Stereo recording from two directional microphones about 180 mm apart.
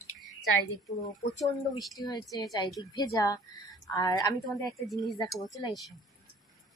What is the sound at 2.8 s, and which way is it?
A woman's voice, 25° left (ahead or behind).